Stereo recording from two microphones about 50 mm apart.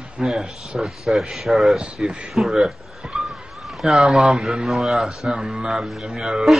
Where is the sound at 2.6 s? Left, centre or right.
Centre.